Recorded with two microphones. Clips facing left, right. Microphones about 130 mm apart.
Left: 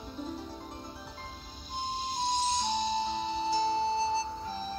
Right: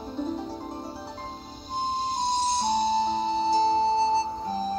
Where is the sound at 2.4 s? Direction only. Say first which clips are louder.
Right 6 dB; 35° right (ahead or behind).